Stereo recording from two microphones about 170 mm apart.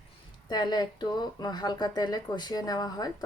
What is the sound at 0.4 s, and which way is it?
Speech, 25° left (ahead or behind).